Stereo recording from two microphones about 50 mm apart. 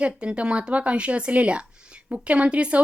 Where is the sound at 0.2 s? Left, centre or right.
Right.